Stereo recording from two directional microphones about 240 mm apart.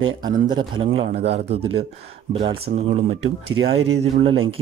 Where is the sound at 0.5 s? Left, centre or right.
Centre.